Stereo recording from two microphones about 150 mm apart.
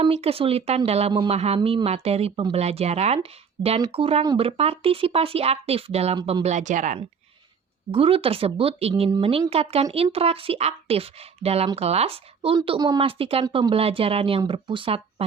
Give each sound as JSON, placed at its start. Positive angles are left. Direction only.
{"t": 0.0, "sound": "a woman's voice", "side_deg": -40}
{"t": 6.4, "sound": "speech", "side_deg": -55}
{"t": 7.9, "sound": "speech", "side_deg": -40}
{"t": 9.0, "sound": "speech", "side_deg": -25}
{"t": 9.5, "sound": "speech", "side_deg": -40}